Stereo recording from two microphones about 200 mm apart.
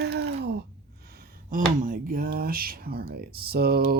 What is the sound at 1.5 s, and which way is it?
Speech, 40° right (ahead or behind).